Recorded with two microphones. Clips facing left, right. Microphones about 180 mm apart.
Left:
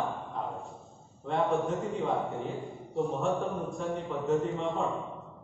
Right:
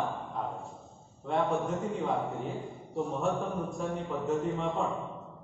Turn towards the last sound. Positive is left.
turn(degrees=0)  # may be behind; listen again after turning